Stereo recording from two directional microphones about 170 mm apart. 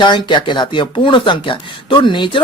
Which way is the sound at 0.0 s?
25° left (ahead or behind).